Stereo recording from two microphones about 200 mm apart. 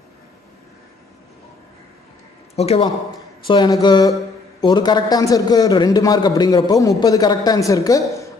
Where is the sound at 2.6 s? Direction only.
30° left (ahead or behind).